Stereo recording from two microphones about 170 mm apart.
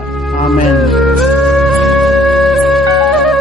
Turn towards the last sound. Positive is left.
turn(degrees=0)  # may be behind; listen again after turning